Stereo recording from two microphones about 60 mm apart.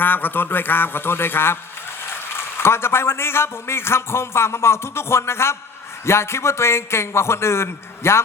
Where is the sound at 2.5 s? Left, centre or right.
Left.